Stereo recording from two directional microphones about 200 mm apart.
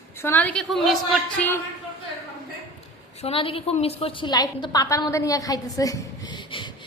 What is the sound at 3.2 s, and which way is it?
A woman's voice, 30° left (ahead or behind).